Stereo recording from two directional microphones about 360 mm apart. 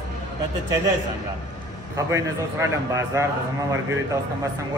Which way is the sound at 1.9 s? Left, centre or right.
Centre.